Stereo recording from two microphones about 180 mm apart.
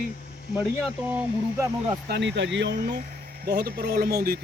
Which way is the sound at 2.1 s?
75° right (ahead or behind).